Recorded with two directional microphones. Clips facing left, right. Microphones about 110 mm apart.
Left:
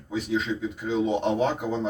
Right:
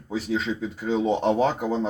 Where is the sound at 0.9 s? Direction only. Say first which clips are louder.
Right 2 dB; 40° right (ahead or behind).